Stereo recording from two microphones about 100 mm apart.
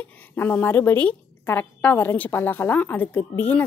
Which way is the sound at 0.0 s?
20° left (ahead or behind).